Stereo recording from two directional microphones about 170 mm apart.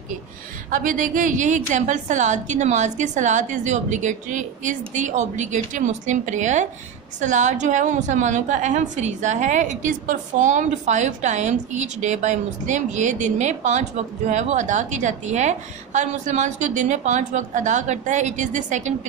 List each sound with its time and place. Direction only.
0.7 s a woman's voice: 50° right (ahead or behind)